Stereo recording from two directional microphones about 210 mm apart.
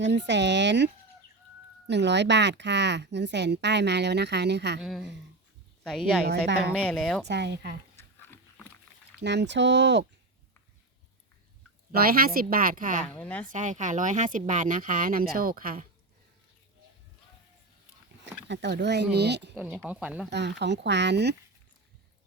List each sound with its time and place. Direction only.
0.0 s a woman's voice: 55° right (ahead or behind)
1.9 s a woman's voice: 55° right (ahead or behind)
4.8 s speech: centre (ahead or behind)
6.2 s speech: 50° right (ahead or behind)
6.7 s speech: 5° left (ahead or behind)
7.3 s speech: 55° right (ahead or behind)
7.9 s dog: 10° left (ahead or behind)
9.1 s a woman's voice: 55° right (ahead or behind)
11.9 s speech: 45° right (ahead or behind)
13.0 s speech: 5° left (ahead or behind)
13.5 s speech: 35° right (ahead or behind)
18.4 s speech: 55° right (ahead or behind)
19.5 s speech: 5° right (ahead or behind)
20.3 s a woman's voice: 55° right (ahead or behind)